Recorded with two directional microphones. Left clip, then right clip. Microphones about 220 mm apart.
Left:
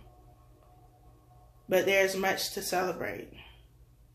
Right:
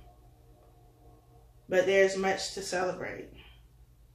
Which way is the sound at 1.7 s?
45° left (ahead or behind).